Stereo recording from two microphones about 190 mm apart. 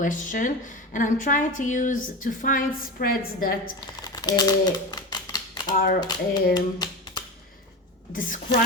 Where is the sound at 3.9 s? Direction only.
20° left (ahead or behind).